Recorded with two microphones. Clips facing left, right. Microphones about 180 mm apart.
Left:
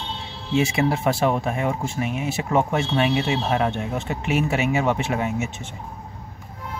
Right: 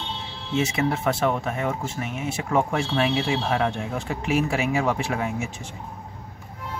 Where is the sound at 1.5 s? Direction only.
10° left (ahead or behind).